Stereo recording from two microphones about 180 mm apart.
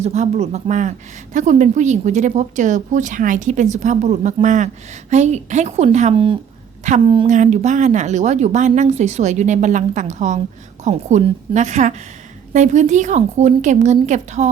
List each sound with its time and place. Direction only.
0.0 s a woman's voice: 40° right (ahead or behind)
7.3 s a woman's voice: 45° right (ahead or behind)